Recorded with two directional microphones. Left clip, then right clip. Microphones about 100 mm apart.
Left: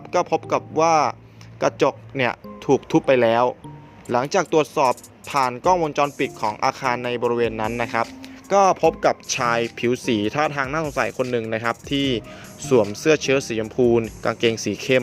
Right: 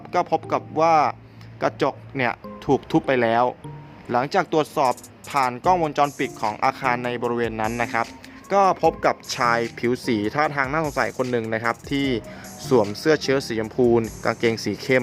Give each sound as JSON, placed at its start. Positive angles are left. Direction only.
{"t": 0.1, "sound": "speech", "side_deg": 25}
{"t": 2.6, "sound": "speech", "side_deg": 25}
{"t": 4.9, "sound": "speech", "side_deg": 30}
{"t": 5.7, "sound": "speech", "side_deg": 20}
{"t": 14.0, "sound": "speech", "side_deg": 30}